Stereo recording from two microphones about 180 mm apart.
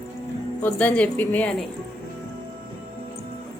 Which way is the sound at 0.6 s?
10° left (ahead or behind).